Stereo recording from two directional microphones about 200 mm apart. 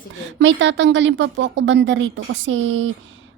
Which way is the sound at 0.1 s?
65° right (ahead or behind).